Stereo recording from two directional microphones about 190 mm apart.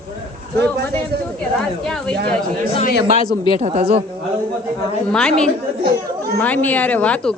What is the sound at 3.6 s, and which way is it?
Speech, 35° right (ahead or behind).